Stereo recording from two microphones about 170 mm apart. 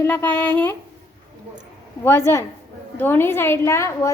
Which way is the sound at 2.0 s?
15° left (ahead or behind).